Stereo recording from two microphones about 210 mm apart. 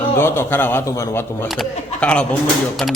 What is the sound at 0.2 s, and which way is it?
A man's voice, 10° left (ahead or behind).